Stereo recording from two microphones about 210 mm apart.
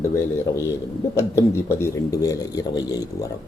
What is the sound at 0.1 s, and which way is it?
A man's voice, 10° left (ahead or behind).